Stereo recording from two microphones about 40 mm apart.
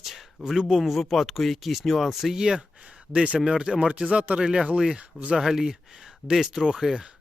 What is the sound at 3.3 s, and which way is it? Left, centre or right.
Speech, centre.